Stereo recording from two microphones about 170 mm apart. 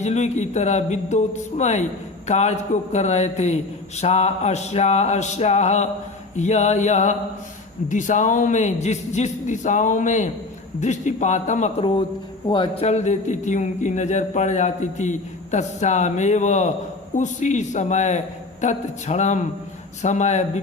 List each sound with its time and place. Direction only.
0.0 s a man's voice: 40° left (ahead or behind)
11.8 s a man's voice: 30° left (ahead or behind)
12.8 s a man's voice: 40° left (ahead or behind)